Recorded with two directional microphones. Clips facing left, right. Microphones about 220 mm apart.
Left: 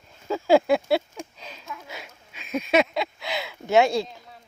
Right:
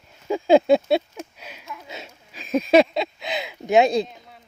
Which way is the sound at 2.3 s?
35° right (ahead or behind).